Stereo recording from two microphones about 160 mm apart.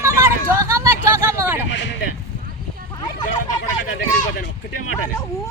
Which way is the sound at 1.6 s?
90° left.